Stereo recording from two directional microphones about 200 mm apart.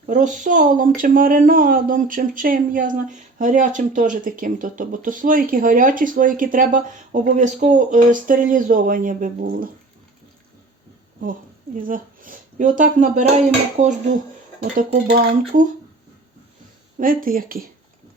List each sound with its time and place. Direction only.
0.1 s speech: 40° right (ahead or behind)
11.2 s speech: 45° right (ahead or behind)
14.6 s speech: 45° right (ahead or behind)
17.0 s speech: 45° right (ahead or behind)